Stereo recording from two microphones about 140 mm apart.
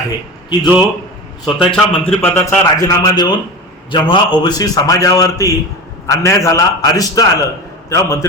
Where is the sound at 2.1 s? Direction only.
15° left (ahead or behind).